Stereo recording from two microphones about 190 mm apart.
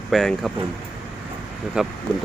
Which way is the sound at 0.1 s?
Centre (ahead or behind).